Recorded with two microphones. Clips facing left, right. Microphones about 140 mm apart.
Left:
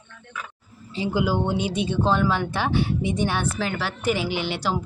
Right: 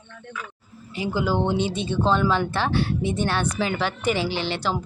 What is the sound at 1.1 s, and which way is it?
Speech, 10° left (ahead or behind).